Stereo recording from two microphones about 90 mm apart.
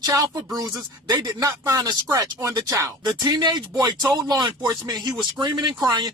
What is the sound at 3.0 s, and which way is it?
Speech, 50° right (ahead or behind).